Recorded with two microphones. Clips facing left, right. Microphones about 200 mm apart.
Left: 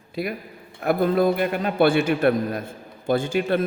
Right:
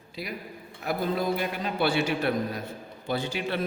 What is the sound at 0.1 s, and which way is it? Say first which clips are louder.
A man's voice: left 8 dB; 55° left (ahead or behind).